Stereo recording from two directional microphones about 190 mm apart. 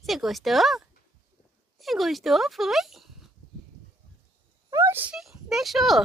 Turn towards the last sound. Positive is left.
turn(degrees=0)  # may be behind; listen again after turning